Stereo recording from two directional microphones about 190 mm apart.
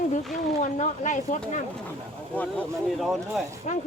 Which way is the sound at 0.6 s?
40° left (ahead or behind).